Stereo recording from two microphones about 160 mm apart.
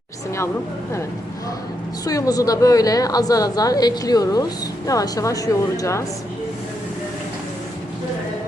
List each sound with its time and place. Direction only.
2.0 s a woman's voice: 20° left (ahead or behind)